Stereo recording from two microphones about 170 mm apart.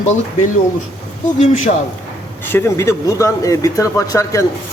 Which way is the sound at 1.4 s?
45° left (ahead or behind).